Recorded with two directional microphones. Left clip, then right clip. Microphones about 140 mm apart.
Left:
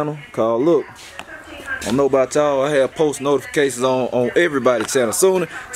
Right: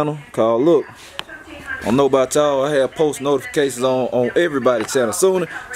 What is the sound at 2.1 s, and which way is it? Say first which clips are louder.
Speech: right 1 dB; 15° right (ahead or behind).